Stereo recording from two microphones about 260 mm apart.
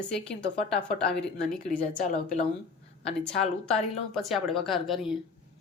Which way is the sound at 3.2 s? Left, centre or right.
Centre.